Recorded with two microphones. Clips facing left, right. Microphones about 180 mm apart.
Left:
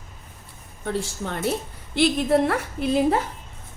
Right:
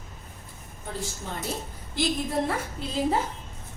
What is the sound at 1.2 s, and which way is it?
A woman's voice, 75° left (ahead or behind).